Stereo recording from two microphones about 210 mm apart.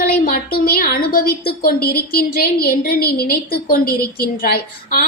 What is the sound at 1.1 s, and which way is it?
A woman's voice, 45° left (ahead or behind).